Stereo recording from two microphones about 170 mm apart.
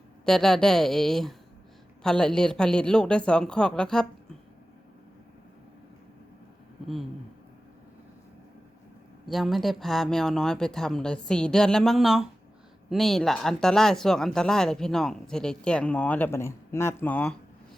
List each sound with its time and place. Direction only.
0.3 s speech: centre (ahead or behind)
9.2 s speech: centre (ahead or behind)